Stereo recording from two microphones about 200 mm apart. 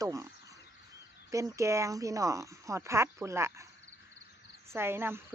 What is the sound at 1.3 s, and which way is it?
Speech, 15° right (ahead or behind).